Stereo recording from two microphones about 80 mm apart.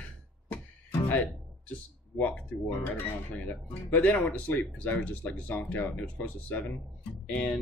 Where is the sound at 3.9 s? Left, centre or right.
Left.